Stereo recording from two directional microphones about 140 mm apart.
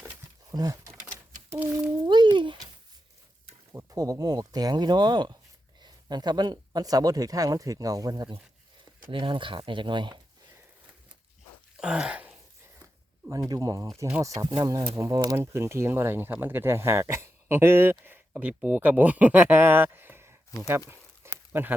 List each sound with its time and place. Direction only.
0.5 s a sound: 25° right (ahead or behind)
1.5 s speech: 10° right (ahead or behind)
2.0 s a sound: 35° right (ahead or behind)
3.7 s speech: 25° right (ahead or behind)
11.8 s sneeze: 5° right (ahead or behind)
13.2 s speech: 20° right (ahead or behind)
21.5 s speech: 15° right (ahead or behind)